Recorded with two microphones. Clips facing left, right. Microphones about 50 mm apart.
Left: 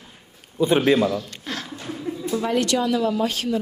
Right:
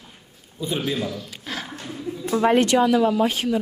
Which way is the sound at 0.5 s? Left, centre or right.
Left.